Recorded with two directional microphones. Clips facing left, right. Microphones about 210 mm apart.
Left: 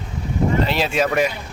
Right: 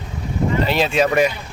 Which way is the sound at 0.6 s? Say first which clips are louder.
Right 2 dB; centre (ahead or behind).